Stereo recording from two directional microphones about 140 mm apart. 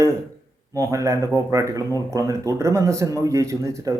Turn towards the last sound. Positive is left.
turn(degrees=-20)  # may be behind; listen again after turning